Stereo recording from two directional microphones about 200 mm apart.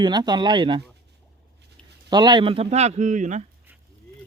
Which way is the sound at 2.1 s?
20° right (ahead or behind).